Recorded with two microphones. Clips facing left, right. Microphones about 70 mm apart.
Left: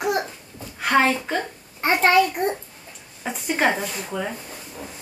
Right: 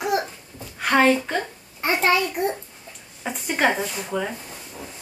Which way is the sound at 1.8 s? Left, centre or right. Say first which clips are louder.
Left 2 dB; left.